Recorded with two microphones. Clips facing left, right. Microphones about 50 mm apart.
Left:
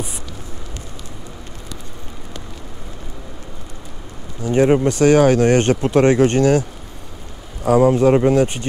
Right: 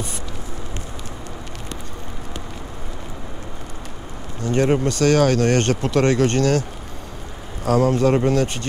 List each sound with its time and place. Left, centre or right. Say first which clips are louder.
4.4 s speech: left 4 dB; centre
7.6 s speech: left 4 dB; centre